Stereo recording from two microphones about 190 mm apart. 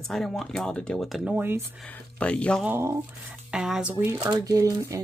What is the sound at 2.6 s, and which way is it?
Speech, 10° right (ahead or behind).